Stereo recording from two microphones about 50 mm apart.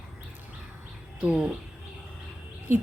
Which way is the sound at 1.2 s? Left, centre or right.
Right.